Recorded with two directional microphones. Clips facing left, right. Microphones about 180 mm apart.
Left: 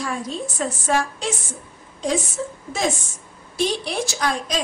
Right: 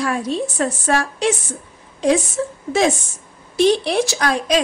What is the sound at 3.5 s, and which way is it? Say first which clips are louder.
A woman's voice: right 8 dB; 70° right (ahead or behind).